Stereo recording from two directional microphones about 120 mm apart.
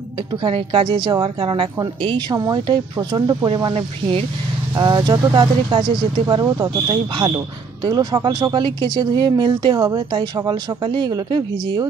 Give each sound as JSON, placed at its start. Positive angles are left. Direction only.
{"t": 0.4, "sound": "a woman's voice", "side_deg": -45}
{"t": 4.7, "sound": "speech", "side_deg": -35}